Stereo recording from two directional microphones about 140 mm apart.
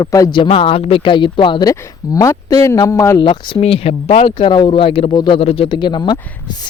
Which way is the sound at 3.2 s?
40° left (ahead or behind).